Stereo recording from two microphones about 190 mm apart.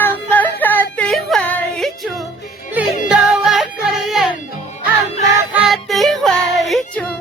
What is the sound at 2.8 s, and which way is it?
Music, 10° right (ahead or behind).